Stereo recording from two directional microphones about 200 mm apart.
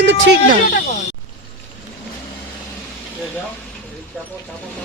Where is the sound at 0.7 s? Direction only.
55° left (ahead or behind).